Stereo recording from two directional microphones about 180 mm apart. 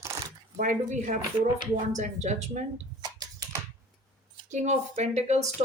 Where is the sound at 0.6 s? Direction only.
45° right (ahead or behind).